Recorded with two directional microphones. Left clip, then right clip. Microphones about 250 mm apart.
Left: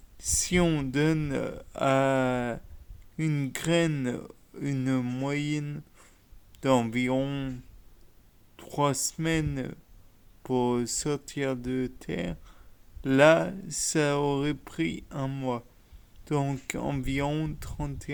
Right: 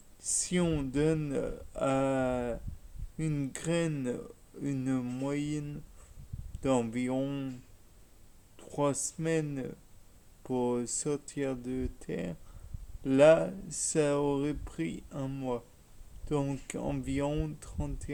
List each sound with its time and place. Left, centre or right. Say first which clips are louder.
0.2 s speech: left 6 dB; left
8.5 s speech: left 4 dB; left